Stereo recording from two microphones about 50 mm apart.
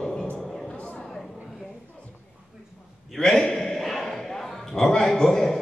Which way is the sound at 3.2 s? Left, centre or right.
Centre.